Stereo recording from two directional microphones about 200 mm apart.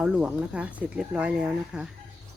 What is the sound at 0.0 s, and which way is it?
Speech, 5° right (ahead or behind).